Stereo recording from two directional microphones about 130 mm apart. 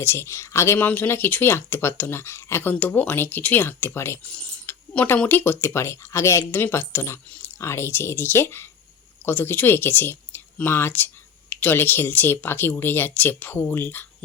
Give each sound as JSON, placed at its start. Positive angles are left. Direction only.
{"t": 0.0, "sound": "speech", "side_deg": 20}